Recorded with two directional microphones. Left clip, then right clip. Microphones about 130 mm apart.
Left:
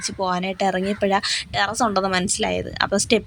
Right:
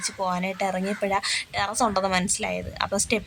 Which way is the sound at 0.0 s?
20° left (ahead or behind).